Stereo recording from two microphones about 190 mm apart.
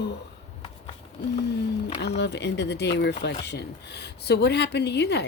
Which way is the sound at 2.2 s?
65° left (ahead or behind).